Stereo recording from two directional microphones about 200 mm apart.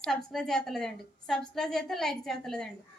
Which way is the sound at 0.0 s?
Centre (ahead or behind).